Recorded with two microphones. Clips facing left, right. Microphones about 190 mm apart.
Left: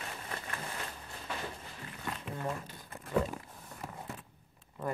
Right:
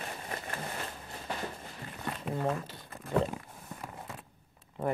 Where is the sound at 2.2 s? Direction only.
35° right (ahead or behind).